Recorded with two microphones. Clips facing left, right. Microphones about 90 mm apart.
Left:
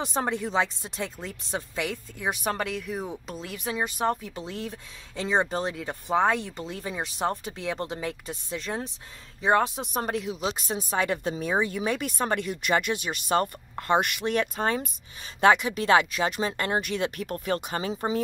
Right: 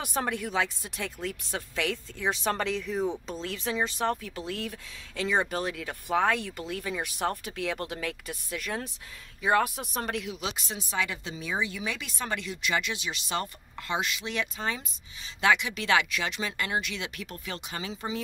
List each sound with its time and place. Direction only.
0.0 s speech: 20° left (ahead or behind); by 18.2 s 40° left (ahead or behind)